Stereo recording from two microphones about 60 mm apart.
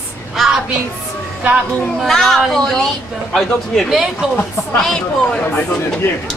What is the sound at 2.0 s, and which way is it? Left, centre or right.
A man's voice, centre.